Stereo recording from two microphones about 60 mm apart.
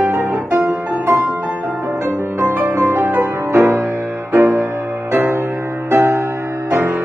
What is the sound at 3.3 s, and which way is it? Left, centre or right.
Music, right.